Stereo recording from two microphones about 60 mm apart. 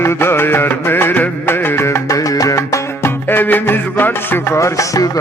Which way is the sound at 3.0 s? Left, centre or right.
Left.